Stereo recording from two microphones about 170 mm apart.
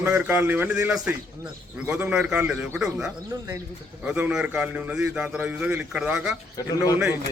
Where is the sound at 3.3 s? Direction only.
15° right (ahead or behind).